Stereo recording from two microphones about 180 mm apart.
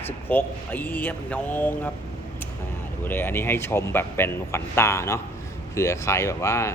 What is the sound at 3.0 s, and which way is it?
A man's voice, 10° left (ahead or behind).